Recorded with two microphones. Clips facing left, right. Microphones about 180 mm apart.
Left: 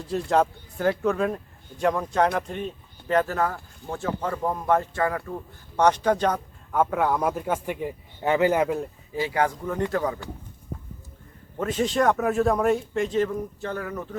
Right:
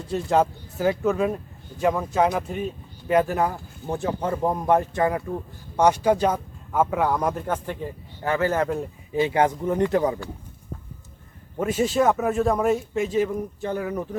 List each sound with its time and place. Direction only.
0.0 s a man's voice: centre (ahead or behind); by 5.2 s 20° right (ahead or behind)
5.7 s a man's voice: 10° right (ahead or behind); by 8.7 s 15° left (ahead or behind)
9.1 s speech: 20° right (ahead or behind)
11.5 s speech: 10° right (ahead or behind)